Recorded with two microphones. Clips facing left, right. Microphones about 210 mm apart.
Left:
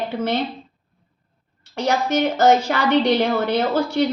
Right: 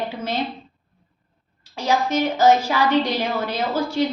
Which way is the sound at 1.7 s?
70° left (ahead or behind).